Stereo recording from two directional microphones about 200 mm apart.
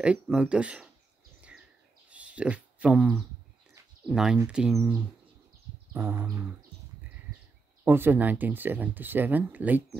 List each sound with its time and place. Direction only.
0.0 s speech: 5° right (ahead or behind)
2.0 s a sound: 5° right (ahead or behind)
4.0 s speech: centre (ahead or behind)
7.8 s speech: 10° right (ahead or behind)